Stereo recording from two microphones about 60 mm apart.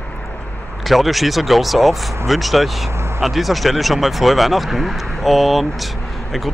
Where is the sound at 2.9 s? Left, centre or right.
Right.